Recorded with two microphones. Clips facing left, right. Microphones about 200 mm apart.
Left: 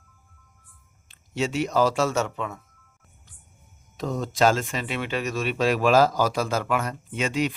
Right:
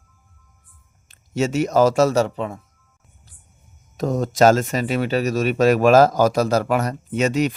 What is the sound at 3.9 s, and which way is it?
Speech, 45° right (ahead or behind).